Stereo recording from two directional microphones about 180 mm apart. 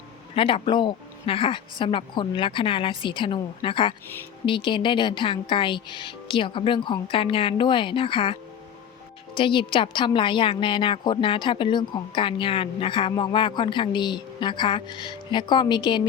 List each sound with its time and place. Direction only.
0.3 s a woman's voice: 30° left (ahead or behind)